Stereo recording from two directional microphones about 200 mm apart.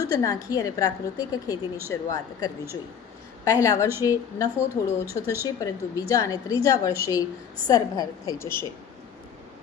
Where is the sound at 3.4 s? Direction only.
15° left (ahead or behind).